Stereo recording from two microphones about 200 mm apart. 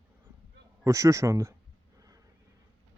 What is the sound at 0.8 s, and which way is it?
Speech, 15° right (ahead or behind).